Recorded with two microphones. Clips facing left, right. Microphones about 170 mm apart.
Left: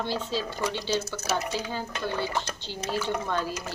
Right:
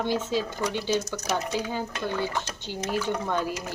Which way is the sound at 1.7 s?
20° right (ahead or behind).